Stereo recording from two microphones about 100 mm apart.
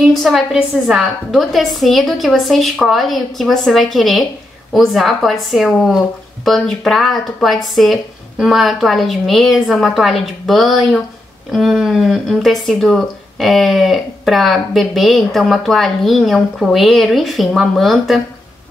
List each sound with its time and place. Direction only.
0.1 s speech: centre (ahead or behind)